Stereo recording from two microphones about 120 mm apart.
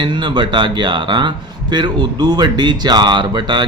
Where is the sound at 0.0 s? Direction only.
40° right (ahead or behind).